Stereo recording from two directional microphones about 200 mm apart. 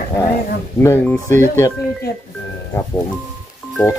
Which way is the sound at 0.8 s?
10° left (ahead or behind).